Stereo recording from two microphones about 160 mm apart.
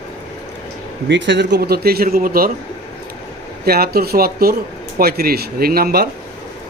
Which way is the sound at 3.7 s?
75° right (ahead or behind).